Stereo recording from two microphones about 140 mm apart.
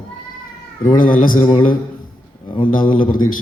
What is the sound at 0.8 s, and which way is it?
A man's voice, 35° left (ahead or behind).